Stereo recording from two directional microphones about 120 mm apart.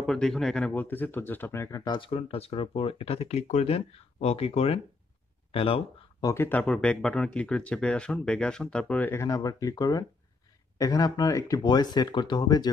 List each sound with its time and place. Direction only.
0.0 s speech: 5° left (ahead or behind); by 1.8 s 20° left (ahead or behind)
1.9 s speech: 45° left (ahead or behind)
6.2 s speech: 20° left (ahead or behind)
6.6 s speech: 5° left (ahead or behind); by 12.7 s 35° left (ahead or behind)